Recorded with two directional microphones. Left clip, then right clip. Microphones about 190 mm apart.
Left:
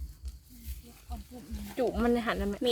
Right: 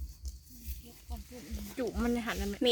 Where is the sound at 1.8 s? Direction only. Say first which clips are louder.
Left 6 dB; 55° left (ahead or behind).